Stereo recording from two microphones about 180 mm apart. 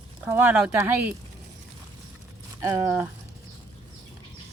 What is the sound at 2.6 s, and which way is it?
Speech, 15° right (ahead or behind).